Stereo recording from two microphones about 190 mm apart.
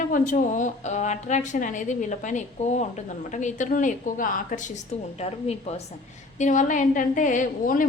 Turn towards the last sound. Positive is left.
turn(degrees=45)  # may be behind; listen again after turning